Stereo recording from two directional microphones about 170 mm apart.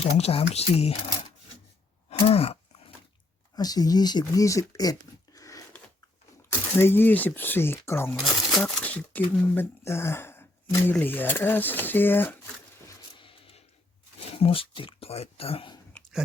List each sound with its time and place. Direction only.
0.0 s speech: 35° left (ahead or behind)
2.0 s groan: 35° left (ahead or behind)
3.5 s speech: 25° left (ahead or behind)
6.7 s speech: 15° left (ahead or behind)
8.2 s speech: centre (ahead or behind)
13.1 s a sound: 30° left (ahead or behind)
14.2 s speech: 35° left (ahead or behind)